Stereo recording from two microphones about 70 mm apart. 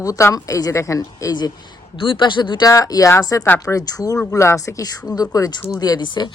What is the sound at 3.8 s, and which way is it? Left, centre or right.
Speech, left.